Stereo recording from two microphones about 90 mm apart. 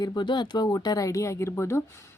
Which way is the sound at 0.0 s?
50° left (ahead or behind).